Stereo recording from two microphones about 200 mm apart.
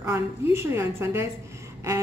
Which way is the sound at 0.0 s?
15° right (ahead or behind).